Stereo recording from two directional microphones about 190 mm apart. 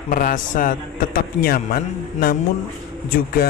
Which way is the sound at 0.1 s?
45° left (ahead or behind).